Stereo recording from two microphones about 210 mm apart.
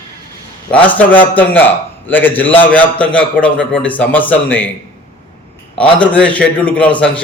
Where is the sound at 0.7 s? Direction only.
5° left (ahead or behind).